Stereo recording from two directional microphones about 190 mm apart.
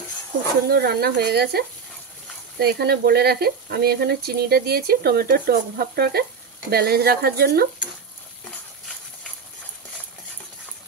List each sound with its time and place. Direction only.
0.7 s speech: 55° right (ahead or behind)
2.6 s speech: 55° right (ahead or behind)